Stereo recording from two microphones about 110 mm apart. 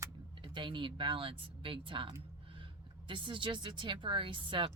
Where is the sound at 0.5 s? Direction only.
45° right (ahead or behind).